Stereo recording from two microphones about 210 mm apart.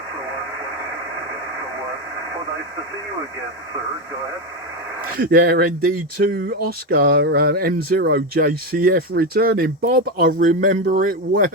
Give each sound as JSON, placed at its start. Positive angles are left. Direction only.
{"t": 5.1, "sound": "speech", "side_deg": -45}